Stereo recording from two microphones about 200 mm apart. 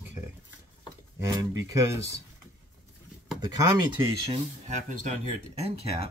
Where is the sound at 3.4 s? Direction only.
20° right (ahead or behind).